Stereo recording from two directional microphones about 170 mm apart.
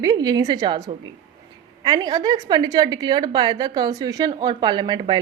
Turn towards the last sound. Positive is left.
turn(degrees=-25)  # may be behind; listen again after turning